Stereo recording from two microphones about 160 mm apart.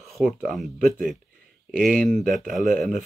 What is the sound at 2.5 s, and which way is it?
Speech, centre (ahead or behind).